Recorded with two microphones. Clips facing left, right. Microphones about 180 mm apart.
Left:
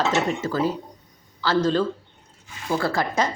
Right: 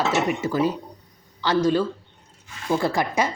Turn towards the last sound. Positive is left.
turn(degrees=-15)  # may be behind; listen again after turning